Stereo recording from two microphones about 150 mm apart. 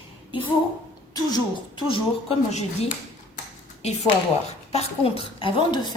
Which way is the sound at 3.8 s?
45° left (ahead or behind).